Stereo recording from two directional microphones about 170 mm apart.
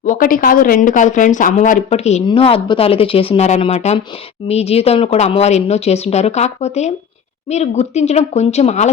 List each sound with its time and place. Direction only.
0.0 s a woman's voice: 50° left (ahead or behind)